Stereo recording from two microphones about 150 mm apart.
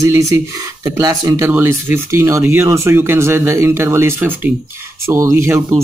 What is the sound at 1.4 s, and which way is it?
Speech, 10° right (ahead or behind).